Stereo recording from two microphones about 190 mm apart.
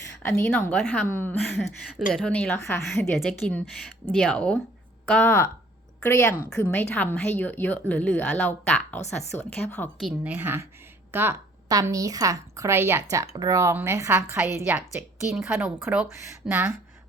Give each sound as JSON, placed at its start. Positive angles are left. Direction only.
{"t": 0.2, "sound": "a woman's voice", "side_deg": 15}
{"t": 2.8, "sound": "a woman's voice", "side_deg": 0}
{"t": 10.0, "sound": "a woman's voice", "side_deg": -5}